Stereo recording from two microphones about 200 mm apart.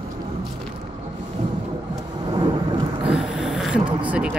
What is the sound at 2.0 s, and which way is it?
Thunder, 20° right (ahead or behind).